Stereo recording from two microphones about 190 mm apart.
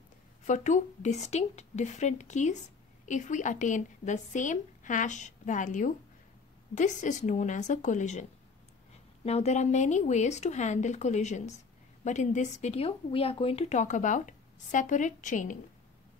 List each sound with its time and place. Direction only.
0.5 s a woman's voice: 40° left (ahead or behind)